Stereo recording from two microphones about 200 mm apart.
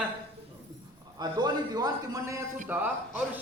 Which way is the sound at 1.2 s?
20° right (ahead or behind).